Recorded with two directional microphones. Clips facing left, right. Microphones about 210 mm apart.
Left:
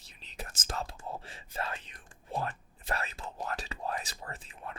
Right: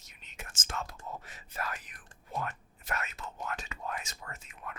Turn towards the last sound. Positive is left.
turn(degrees=30)  # may be behind; listen again after turning